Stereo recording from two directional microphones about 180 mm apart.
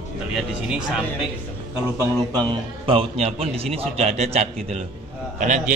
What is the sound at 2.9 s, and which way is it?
A man's voice, 35° right (ahead or behind).